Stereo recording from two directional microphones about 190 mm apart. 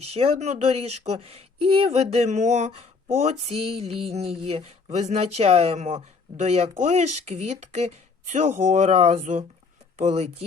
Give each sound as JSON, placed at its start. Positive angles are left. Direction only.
{"t": 0.1, "sound": "speech", "side_deg": -30}